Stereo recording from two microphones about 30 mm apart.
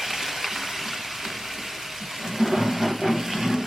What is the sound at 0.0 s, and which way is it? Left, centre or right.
Water, centre.